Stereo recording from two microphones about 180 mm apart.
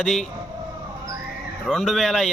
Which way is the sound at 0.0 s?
Centre (ahead or behind).